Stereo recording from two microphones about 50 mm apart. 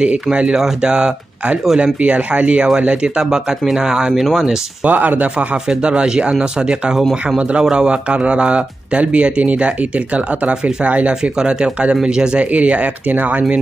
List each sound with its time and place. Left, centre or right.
0.0 s a man's voice: right
3.3 s speech: centre
4.1 s speech: centre
4.8 s a man's voice: right; by 7.0 s centre
7.0 s speech: centre
7.3 s a man's voice: right